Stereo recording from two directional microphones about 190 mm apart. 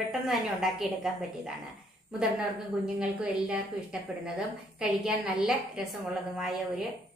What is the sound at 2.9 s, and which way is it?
A woman's voice, 5° right (ahead or behind).